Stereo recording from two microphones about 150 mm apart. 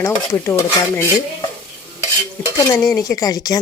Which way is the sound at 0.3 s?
20° left (ahead or behind).